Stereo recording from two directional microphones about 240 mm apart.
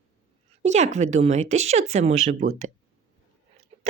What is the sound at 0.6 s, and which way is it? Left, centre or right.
Speech, right.